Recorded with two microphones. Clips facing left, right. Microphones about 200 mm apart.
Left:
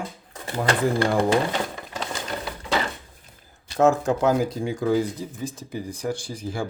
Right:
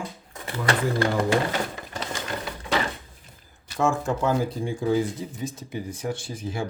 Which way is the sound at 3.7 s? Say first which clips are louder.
Left 5 dB; 65° left (ahead or behind).